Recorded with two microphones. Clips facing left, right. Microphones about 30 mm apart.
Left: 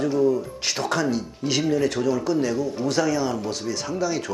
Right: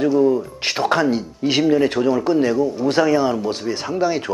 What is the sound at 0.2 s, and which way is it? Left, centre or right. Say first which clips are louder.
Speech: right 4 dB; right.